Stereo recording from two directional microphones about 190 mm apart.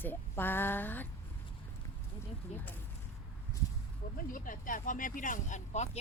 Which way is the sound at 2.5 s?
35° left (ahead or behind).